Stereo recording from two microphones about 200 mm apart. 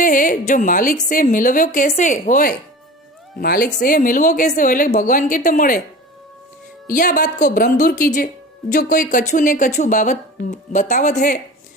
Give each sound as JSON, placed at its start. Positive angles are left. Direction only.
{"t": 0.0, "sound": "a woman's voice", "side_deg": 45}
{"t": 6.8, "sound": "a woman's voice", "side_deg": 40}